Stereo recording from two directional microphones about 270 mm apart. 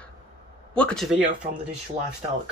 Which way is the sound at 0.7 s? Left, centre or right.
Centre.